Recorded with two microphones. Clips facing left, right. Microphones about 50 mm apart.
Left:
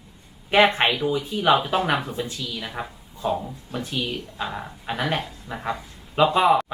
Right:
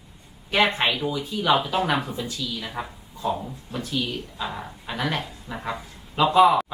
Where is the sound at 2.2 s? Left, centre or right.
Left.